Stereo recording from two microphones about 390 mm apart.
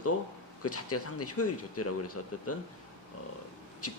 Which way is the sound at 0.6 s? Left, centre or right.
Left.